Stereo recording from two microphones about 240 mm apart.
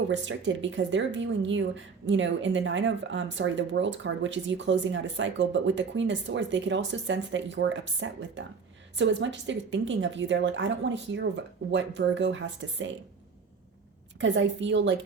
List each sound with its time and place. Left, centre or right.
0.1 s a woman's voice: right
14.2 s a woman's voice: right